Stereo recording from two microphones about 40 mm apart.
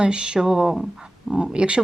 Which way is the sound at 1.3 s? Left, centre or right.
Right.